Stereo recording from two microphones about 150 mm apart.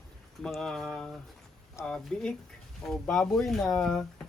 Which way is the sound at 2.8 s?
5° left (ahead or behind).